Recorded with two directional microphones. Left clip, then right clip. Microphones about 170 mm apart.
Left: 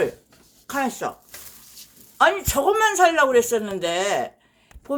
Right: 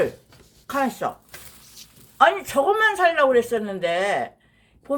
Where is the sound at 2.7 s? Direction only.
20° left (ahead or behind).